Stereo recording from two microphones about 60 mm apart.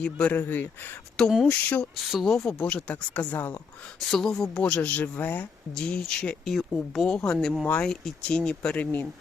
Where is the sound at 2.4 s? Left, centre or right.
Centre.